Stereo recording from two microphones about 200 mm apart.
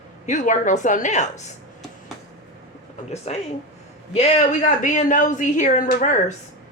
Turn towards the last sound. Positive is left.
turn(degrees=40)  # may be behind; listen again after turning